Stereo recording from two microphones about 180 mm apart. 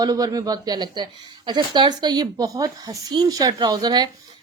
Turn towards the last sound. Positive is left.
turn(degrees=-25)  # may be behind; listen again after turning